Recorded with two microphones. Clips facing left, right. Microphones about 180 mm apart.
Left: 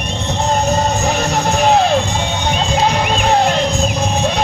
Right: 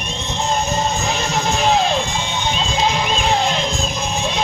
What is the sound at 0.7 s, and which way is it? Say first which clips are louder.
Music: left 4 dB; 35° left (ahead or behind).